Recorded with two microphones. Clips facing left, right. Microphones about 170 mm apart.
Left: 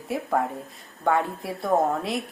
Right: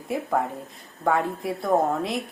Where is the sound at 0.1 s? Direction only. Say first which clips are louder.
Even; centre (ahead or behind).